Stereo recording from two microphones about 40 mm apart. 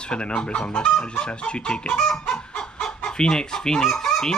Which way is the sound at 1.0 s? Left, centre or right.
Left.